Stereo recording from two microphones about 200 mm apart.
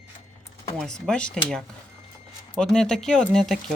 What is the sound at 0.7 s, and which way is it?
Speech, 5° left (ahead or behind).